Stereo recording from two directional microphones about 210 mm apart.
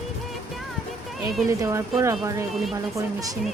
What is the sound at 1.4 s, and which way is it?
Speech, 15° right (ahead or behind).